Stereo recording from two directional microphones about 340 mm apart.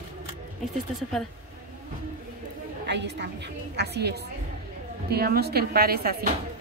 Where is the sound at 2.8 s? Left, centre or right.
Right.